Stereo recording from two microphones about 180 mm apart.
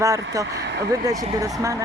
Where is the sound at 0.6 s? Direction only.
75° right (ahead or behind).